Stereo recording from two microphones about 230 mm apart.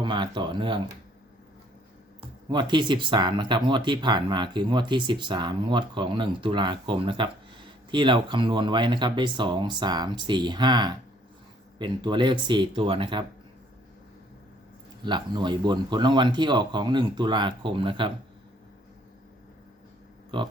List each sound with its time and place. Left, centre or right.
0.0 s speech: centre
2.5 s speech: centre
15.0 s speech: centre